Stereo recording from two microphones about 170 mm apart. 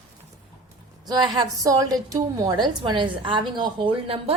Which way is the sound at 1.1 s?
25° right (ahead or behind).